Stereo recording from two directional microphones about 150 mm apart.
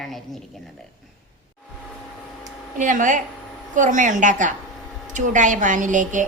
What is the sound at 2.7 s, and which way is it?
A woman's voice, 60° right (ahead or behind).